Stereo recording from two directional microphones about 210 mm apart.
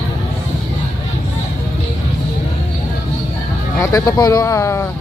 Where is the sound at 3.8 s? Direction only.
15° left (ahead or behind).